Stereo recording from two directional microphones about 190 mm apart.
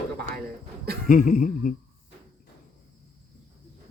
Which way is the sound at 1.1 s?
45° left (ahead or behind).